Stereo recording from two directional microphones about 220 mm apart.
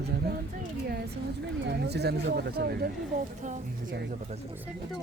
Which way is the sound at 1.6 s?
50° right (ahead or behind).